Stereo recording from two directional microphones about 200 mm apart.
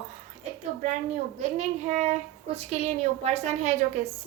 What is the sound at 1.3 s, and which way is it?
A woman's voice, 35° right (ahead or behind).